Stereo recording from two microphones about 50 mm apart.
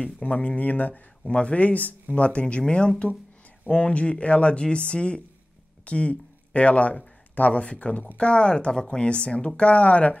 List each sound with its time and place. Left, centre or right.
0.0 s speech: left